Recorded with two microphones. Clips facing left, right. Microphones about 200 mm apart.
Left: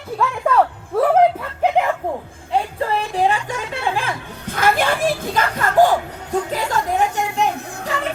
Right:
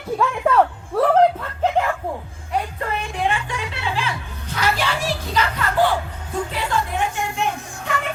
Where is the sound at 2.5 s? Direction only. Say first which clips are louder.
Left 4 dB; 30° left (ahead or behind).